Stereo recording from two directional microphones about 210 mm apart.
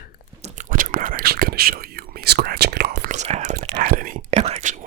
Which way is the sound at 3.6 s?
45° right (ahead or behind).